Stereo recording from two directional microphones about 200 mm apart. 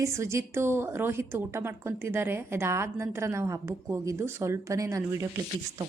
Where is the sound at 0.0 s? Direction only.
15° right (ahead or behind).